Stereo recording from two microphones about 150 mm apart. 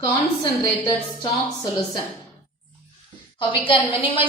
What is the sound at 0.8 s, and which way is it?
Speech, 30° left (ahead or behind).